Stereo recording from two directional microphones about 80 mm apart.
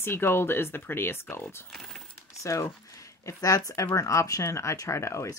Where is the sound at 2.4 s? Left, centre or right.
Left.